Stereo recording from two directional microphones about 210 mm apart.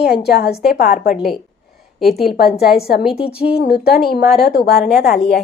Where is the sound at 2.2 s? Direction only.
45° left (ahead or behind).